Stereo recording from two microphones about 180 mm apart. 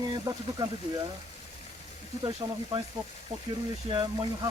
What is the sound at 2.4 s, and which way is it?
Speech, 20° right (ahead or behind).